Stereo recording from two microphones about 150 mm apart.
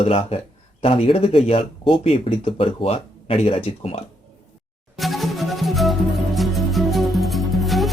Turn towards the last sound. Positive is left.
turn(degrees=0)  # may be behind; listen again after turning